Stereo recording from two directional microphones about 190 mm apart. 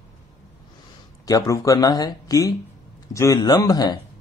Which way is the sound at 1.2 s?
20° left (ahead or behind).